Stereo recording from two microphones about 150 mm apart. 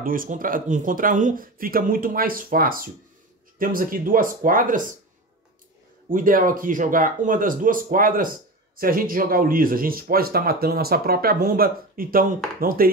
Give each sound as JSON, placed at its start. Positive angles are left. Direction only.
{"t": 0.0, "sound": "speech", "side_deg": -70}
{"t": 6.0, "sound": "speech", "side_deg": -65}